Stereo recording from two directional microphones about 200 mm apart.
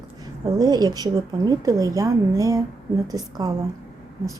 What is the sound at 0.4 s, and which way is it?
A woman's voice, 20° right (ahead or behind).